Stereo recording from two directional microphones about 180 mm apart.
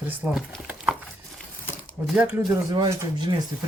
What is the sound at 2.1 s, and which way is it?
Speech, 5° right (ahead or behind).